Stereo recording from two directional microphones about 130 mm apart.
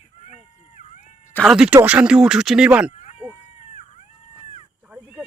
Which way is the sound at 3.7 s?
60° left (ahead or behind).